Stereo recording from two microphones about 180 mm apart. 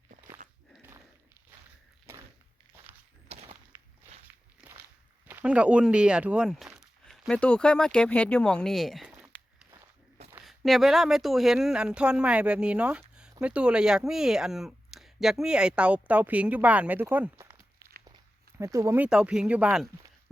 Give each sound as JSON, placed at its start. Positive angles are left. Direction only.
{"t": 2.1, "sound": "walk", "side_deg": -15}
{"t": 3.3, "sound": "a sound", "side_deg": -35}
{"t": 4.3, "sound": "walk", "side_deg": -10}
{"t": 5.3, "sound": "speech", "side_deg": -10}
{"t": 10.4, "sound": "speech", "side_deg": 0}